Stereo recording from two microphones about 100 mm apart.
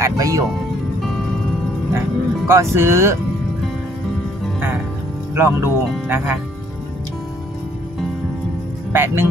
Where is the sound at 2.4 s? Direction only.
25° right (ahead or behind).